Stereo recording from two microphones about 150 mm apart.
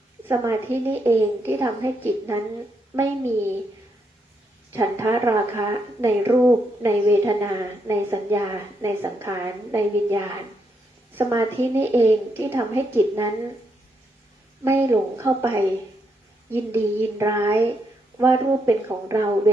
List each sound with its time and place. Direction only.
0.3 s a woman's voice: 15° right (ahead or behind)
4.7 s a woman's voice: 15° right (ahead or behind)
14.6 s a woman's voice: 15° right (ahead or behind)